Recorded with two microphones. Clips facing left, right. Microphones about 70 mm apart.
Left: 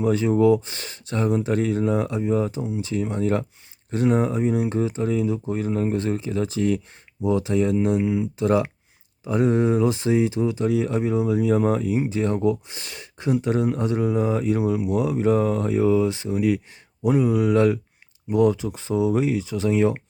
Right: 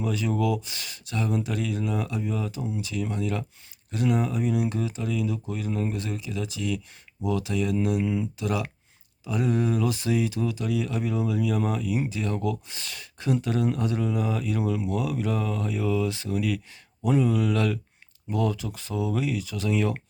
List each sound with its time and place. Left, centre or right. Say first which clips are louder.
0.0 s speech: left 8 dB; left
8.4 s speech: left 8 dB; left
14.6 s speech: left 5 dB; centre
17.0 s speech: left 4 dB; centre